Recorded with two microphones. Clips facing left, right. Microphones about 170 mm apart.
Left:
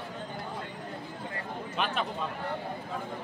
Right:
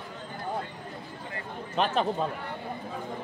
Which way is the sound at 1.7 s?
35° right (ahead or behind).